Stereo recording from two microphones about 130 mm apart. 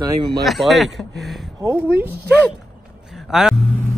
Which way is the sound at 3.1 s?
5° right (ahead or behind).